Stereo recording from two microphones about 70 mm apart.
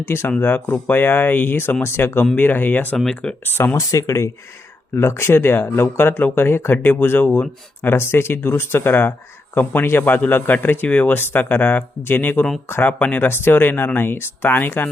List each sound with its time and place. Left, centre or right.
0.0 s a man's voice: left
3.0 s speech: centre
3.4 s speech: left
3.8 s a man's voice: left
13.2 s a man's voice: left